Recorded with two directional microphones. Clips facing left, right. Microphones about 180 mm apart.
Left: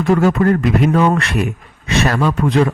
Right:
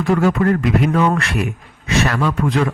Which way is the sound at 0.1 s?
40° left (ahead or behind).